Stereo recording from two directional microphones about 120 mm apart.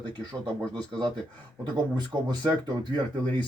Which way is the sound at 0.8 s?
35° right (ahead or behind).